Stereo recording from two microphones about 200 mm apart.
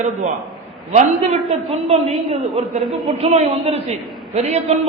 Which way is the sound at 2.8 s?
Centre (ahead or behind).